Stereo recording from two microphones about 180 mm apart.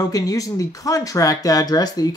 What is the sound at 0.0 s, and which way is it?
Speech, 20° left (ahead or behind).